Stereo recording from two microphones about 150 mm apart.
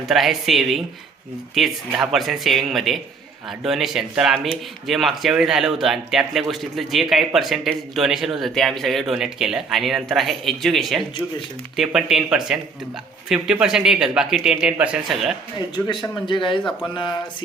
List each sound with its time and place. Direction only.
0.0 s speech: centre (ahead or behind)
16.2 s speech: 35° left (ahead or behind)